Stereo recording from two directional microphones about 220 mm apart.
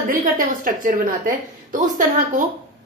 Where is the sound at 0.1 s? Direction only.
40° right (ahead or behind).